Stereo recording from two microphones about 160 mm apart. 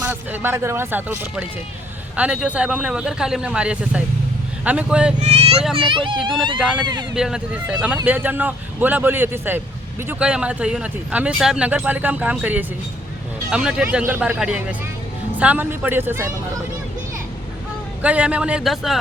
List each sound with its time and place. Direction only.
0.0 s speech: 10° right (ahead or behind)
5.2 s a sound: 40° right (ahead or behind)
5.7 s a child's voice: 30° right (ahead or behind)
7.2 s speech: 5° right (ahead or behind)
18.0 s speech: 10° right (ahead or behind)